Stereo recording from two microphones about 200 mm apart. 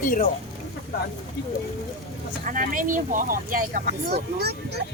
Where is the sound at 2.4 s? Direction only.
45° right (ahead or behind).